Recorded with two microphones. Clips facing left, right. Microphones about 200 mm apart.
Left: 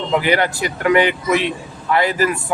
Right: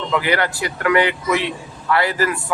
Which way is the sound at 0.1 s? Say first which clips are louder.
Left 3 dB; 20° left (ahead or behind).